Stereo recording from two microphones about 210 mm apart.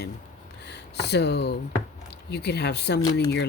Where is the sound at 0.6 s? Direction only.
55° left (ahead or behind).